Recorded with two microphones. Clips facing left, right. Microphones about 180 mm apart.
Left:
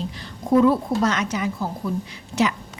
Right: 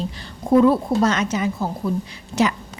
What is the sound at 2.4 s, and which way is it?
Speech, 35° right (ahead or behind).